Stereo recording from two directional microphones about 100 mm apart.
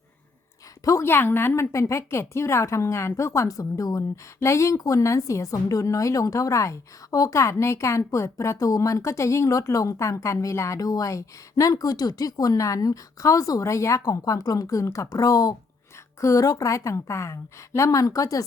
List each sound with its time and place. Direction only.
0.9 s a woman's voice: 25° left (ahead or behind)